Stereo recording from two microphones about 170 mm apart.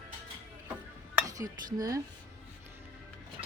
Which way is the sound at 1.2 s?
20° right (ahead or behind).